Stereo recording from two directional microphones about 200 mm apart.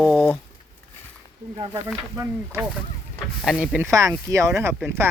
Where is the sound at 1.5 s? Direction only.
20° right (ahead or behind).